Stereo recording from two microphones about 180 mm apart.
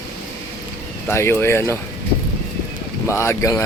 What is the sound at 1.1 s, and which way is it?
Speech, 15° left (ahead or behind).